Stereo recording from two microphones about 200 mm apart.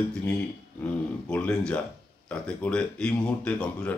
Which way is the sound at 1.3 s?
5° left (ahead or behind).